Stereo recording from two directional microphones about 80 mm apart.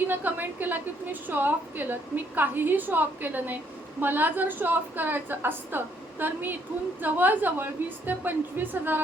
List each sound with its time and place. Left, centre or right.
0.1 s a woman's voice: right